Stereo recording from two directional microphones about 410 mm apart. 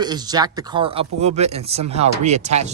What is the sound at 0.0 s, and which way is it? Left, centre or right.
Speech, centre.